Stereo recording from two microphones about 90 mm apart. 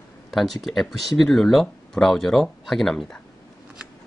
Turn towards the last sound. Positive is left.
turn(degrees=5)  # may be behind; listen again after turning